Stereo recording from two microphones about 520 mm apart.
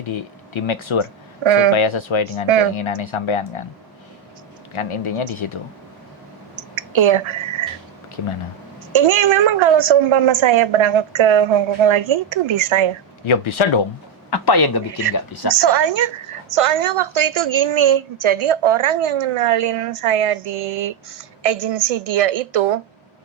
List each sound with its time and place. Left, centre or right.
0.0 s speech: left
1.5 s a woman's voice: right
1.7 s speech: left
2.5 s a woman's voice: right
3.0 s speech: left
4.7 s speech: left
6.7 s a sound: right
8.9 s a woman's voice: right
13.2 s speech: left
14.3 s a man's voice: left
15.4 s a woman's voice: right